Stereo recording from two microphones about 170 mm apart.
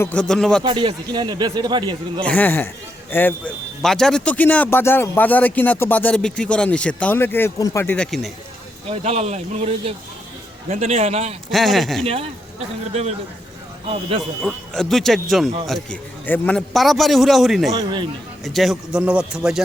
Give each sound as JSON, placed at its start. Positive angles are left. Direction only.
{"t": 0.0, "sound": "a man's voice", "side_deg": 5}
{"t": 0.6, "sound": "speech", "side_deg": -30}
{"t": 2.2, "sound": "speech", "side_deg": 10}
{"t": 8.9, "sound": "speech", "side_deg": -40}
{"t": 11.5, "sound": "a man's voice", "side_deg": 0}
{"t": 12.0, "sound": "speech", "side_deg": -35}
{"t": 14.4, "sound": "a man's voice", "side_deg": 0}
{"t": 17.7, "sound": "speech", "side_deg": -25}
{"t": 18.4, "sound": "a man's voice", "side_deg": 0}